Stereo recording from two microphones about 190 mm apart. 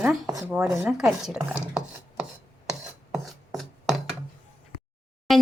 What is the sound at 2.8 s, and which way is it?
Chopping, centre (ahead or behind).